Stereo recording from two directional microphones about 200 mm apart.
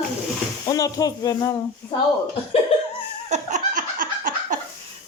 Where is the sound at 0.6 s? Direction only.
20° left (ahead or behind).